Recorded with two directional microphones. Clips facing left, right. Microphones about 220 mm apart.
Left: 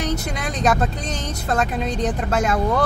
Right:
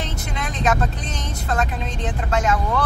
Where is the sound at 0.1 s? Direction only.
40° left (ahead or behind).